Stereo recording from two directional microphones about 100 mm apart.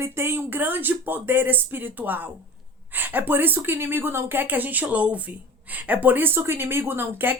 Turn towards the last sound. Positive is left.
turn(degrees=-20)  # may be behind; listen again after turning